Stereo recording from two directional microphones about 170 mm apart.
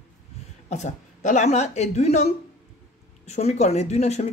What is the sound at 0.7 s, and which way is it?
Speech, 45° left (ahead or behind).